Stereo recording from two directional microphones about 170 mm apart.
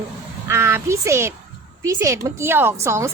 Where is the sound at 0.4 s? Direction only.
15° right (ahead or behind).